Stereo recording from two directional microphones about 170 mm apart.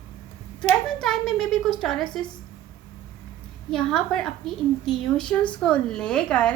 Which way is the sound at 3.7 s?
5° left (ahead or behind).